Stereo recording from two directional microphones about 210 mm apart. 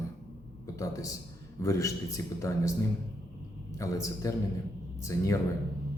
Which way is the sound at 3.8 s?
15° left (ahead or behind).